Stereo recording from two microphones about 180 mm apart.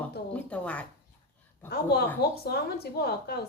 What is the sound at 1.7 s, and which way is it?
A woman's voice, 60° left (ahead or behind).